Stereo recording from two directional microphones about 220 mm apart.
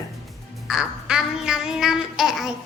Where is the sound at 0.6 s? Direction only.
5° right (ahead or behind).